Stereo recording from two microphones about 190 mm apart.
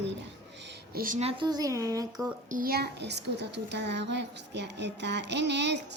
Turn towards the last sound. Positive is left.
turn(degrees=-65)  # may be behind; listen again after turning